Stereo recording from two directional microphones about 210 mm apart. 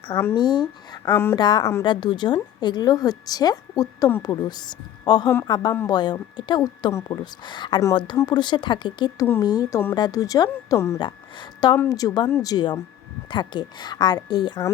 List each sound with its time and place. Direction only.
0.1 s a woman's voice: 15° left (ahead or behind)
1.1 s a woman's voice: 10° left (ahead or behind)